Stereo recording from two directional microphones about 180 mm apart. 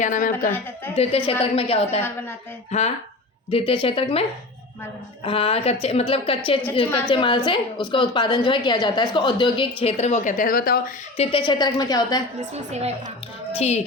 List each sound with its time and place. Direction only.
0.0 s a woman's voice: 45° left (ahead or behind)
0.9 s a woman's voice: 30° left (ahead or behind); by 10.8 s 55° left (ahead or behind)
11.2 s a woman's voice: 30° left (ahead or behind)
12.4 s a woman's voice: 35° right (ahead or behind)
13.6 s a woman's voice: 35° left (ahead or behind)